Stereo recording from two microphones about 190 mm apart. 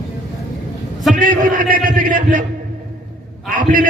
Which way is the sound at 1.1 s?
45° right (ahead or behind).